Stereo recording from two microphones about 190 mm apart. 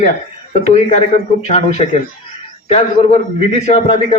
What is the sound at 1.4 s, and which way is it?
A man's voice, 35° left (ahead or behind).